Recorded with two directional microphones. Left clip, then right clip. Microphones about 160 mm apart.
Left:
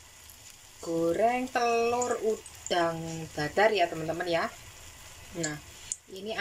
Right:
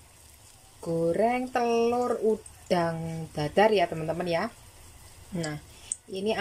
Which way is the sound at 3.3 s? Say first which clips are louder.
Right 3 dB; 10° right (ahead or behind).